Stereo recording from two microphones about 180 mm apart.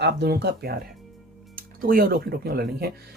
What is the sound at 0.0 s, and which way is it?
Speech, 65° right (ahead or behind).